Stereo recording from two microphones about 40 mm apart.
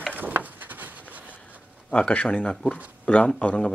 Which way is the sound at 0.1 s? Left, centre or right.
Right.